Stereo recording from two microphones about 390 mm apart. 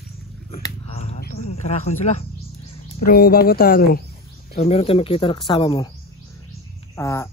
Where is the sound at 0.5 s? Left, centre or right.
Centre.